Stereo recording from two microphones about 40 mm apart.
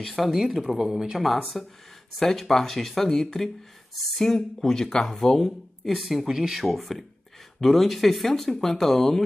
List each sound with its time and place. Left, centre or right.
0.0 s speech: centre
5.9 s speech: centre